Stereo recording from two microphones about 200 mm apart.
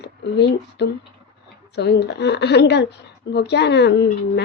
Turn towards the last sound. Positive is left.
turn(degrees=60)  # may be behind; listen again after turning